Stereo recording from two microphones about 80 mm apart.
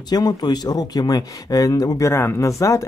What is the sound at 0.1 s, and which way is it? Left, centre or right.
Speech, left.